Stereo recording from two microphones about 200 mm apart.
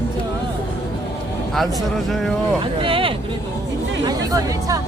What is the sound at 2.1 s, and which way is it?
Speech, centre (ahead or behind).